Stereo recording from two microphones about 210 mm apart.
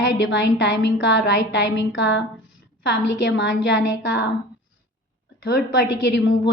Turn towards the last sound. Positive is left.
turn(degrees=55)  # may be behind; listen again after turning